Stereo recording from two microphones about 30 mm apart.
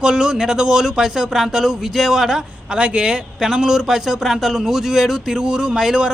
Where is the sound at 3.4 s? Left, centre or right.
Centre.